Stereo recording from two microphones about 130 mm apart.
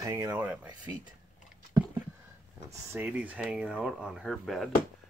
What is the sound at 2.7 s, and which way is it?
Speech, 20° right (ahead or behind).